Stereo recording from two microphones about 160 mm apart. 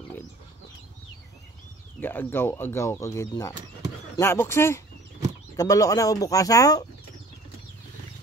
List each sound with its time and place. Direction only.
2.0 s speech: 15° left (ahead or behind)